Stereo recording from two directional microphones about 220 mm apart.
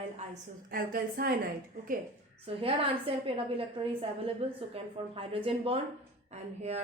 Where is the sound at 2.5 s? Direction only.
25° right (ahead or behind).